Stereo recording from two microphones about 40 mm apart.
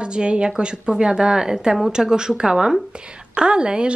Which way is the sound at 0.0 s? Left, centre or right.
Right.